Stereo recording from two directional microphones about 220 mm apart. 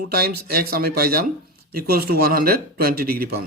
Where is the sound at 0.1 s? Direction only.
45° right (ahead or behind).